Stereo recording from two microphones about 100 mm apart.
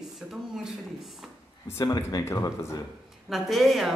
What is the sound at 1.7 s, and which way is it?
Speech, 30° left (ahead or behind).